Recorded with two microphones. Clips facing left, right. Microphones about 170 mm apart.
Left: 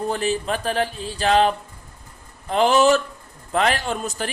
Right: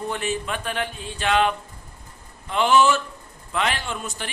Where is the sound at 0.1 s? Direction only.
35° left (ahead or behind).